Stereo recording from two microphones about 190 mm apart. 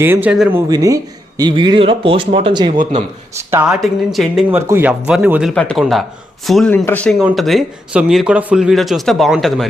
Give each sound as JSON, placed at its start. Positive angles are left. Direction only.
{"t": 0.0, "sound": "speech", "side_deg": -10}
{"t": 0.7, "sound": "speech", "side_deg": -20}
{"t": 3.3, "sound": "speech", "side_deg": -10}
{"t": 3.8, "sound": "speech", "side_deg": 0}